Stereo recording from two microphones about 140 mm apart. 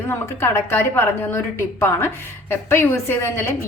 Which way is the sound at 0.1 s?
15° left (ahead or behind).